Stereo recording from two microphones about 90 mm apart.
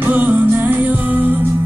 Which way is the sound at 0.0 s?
20° right (ahead or behind).